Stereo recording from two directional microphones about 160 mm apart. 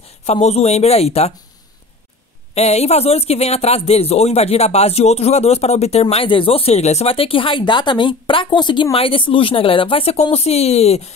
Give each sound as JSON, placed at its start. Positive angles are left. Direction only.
{"t": 0.2, "sound": "speech", "side_deg": 40}
{"t": 2.5, "sound": "speech", "side_deg": 40}